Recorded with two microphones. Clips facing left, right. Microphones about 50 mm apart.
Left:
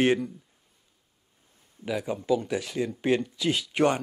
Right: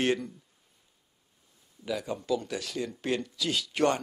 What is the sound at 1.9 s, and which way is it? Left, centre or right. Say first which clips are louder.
Speech: left 4 dB; centre.